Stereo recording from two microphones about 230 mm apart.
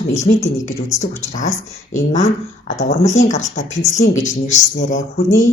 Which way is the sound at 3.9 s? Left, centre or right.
Left.